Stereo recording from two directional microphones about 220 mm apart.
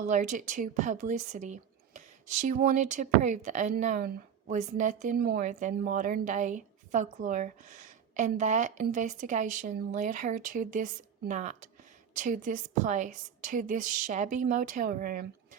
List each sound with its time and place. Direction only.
0.0 s a woman's voice: 35° right (ahead or behind)